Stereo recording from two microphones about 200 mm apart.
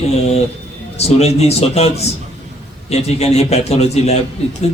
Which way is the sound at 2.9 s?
30° left (ahead or behind).